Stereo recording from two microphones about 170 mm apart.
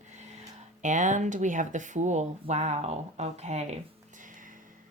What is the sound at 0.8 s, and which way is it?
A woman's voice, 45° right (ahead or behind).